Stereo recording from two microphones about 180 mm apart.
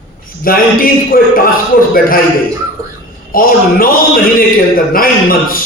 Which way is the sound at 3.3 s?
55° left (ahead or behind).